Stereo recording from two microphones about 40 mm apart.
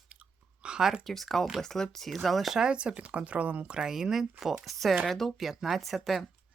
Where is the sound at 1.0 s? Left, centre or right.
Centre.